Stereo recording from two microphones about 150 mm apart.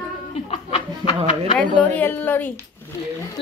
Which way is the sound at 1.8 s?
10° left (ahead or behind).